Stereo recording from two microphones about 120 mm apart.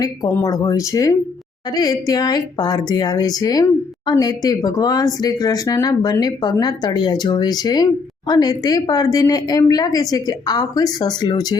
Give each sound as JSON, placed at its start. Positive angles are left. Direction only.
{"t": 0.0, "sound": "a woman's voice", "side_deg": 30}